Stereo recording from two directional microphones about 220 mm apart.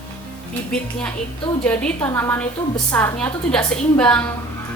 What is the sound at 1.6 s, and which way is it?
A woman's voice, 5° left (ahead or behind).